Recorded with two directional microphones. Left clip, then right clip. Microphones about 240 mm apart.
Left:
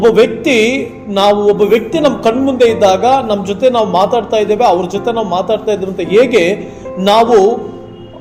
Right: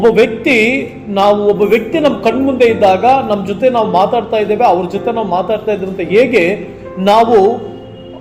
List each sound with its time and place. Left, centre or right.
0.0 s a man's voice: left